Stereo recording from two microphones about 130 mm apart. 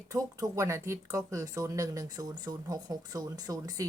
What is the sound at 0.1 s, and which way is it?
A woman's voice, 25° right (ahead or behind).